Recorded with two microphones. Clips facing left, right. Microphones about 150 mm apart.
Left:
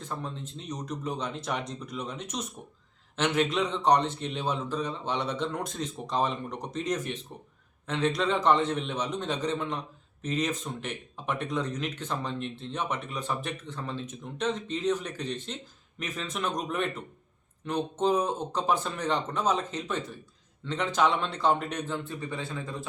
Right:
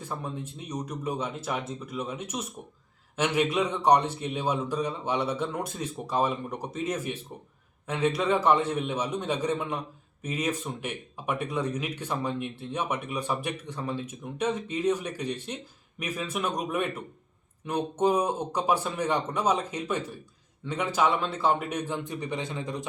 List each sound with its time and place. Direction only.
0.0 s speech: 10° right (ahead or behind)